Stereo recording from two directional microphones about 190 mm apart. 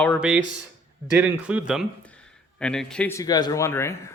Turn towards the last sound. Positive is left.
turn(degrees=15)  # may be behind; listen again after turning